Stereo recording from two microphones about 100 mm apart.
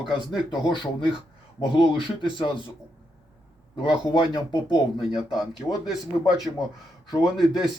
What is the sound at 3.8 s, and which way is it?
Speech, 50° left (ahead or behind).